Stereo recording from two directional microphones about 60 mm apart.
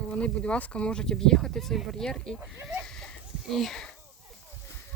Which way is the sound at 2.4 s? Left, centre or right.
Right.